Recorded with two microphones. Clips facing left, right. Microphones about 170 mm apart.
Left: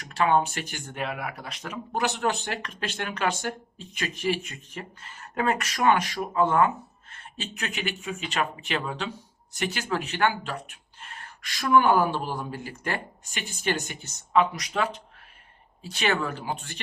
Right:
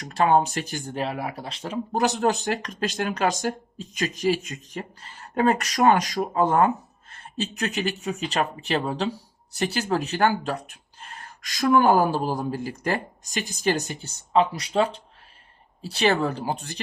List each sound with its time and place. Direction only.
0.0 s speech: 40° right (ahead or behind)